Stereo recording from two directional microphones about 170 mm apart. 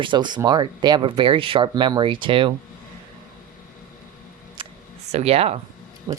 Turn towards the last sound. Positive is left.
turn(degrees=-30)  # may be behind; listen again after turning